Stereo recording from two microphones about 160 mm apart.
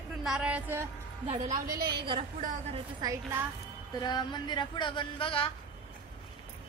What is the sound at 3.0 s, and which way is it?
Speech, 20° right (ahead or behind).